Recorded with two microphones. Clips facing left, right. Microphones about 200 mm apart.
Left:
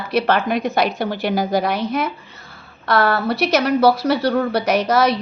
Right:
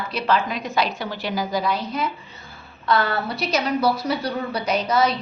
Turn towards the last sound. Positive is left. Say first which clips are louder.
# left 4 dB
turn(degrees=80)